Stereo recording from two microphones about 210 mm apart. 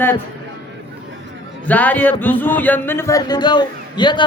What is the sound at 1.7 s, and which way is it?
A man's voice, 5° left (ahead or behind).